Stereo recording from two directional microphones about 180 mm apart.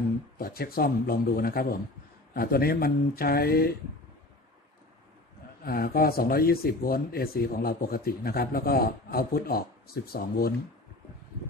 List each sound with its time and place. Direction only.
0.4 s speech: 55° left (ahead or behind)
5.6 s speech: 55° left (ahead or behind)